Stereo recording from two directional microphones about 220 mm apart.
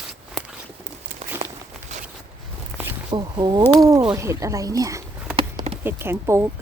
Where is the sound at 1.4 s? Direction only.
30° right (ahead or behind).